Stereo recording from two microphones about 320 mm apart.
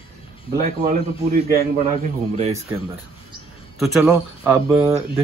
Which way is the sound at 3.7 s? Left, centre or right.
Centre.